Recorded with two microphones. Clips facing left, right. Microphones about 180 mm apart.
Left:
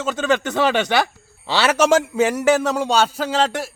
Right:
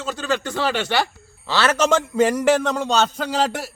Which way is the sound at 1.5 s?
15° left (ahead or behind).